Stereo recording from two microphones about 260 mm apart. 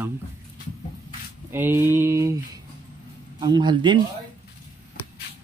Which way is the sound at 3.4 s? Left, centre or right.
Centre.